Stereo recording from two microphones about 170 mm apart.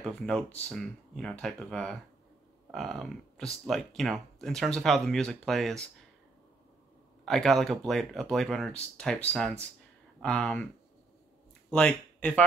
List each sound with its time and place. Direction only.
0.0 s speech: 5° left (ahead or behind)
7.2 s speech: centre (ahead or behind)
11.7 s speech: 5° left (ahead or behind)